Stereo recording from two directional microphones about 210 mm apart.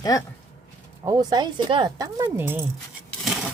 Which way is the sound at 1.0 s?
20° right (ahead or behind).